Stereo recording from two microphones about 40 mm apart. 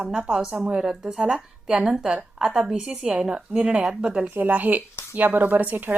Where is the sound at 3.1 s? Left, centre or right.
Right.